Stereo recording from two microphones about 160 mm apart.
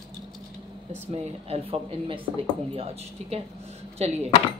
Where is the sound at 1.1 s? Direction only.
35° right (ahead or behind).